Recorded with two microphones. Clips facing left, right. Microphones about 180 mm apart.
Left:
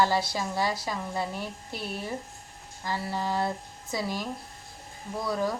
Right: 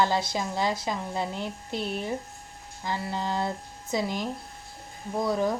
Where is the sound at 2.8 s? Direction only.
20° right (ahead or behind).